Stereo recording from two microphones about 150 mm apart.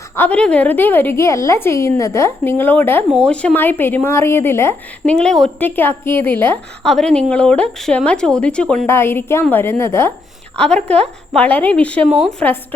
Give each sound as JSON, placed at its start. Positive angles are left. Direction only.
{"t": 0.2, "sound": "speech", "side_deg": 10}
{"t": 5.1, "sound": "a woman's voice", "side_deg": 5}
{"t": 10.6, "sound": "a woman's voice", "side_deg": 5}
{"t": 10.8, "sound": "a woman's voice", "side_deg": -45}
{"t": 11.3, "sound": "speech", "side_deg": 10}
{"t": 12.0, "sound": "a woman's voice", "side_deg": 0}